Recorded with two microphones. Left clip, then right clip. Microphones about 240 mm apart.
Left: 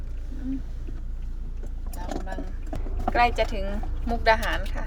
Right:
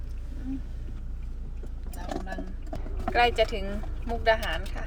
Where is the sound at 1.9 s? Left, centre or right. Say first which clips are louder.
Left 1 dB; centre.